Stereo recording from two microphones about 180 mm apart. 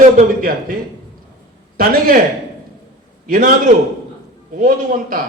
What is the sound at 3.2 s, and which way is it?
Speech, 50° right (ahead or behind).